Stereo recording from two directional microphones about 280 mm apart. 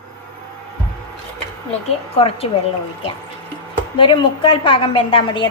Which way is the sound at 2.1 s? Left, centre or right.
Left.